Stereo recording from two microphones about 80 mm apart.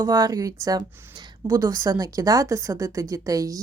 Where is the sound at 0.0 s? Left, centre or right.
Right.